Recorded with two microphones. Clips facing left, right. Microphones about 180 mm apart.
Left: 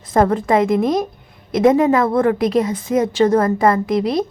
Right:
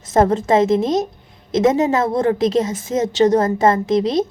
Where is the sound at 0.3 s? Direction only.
25° right (ahead or behind).